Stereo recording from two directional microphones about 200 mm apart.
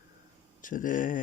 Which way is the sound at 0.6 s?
40° left (ahead or behind).